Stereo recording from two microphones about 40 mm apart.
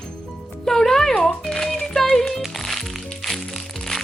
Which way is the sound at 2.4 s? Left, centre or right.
Centre.